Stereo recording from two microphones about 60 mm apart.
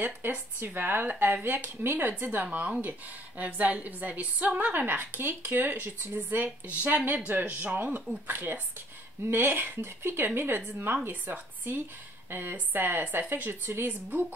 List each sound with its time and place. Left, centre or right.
0.6 s speech: right